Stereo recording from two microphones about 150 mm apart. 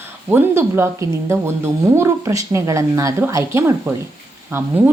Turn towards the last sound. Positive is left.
turn(degrees=-15)  # may be behind; listen again after turning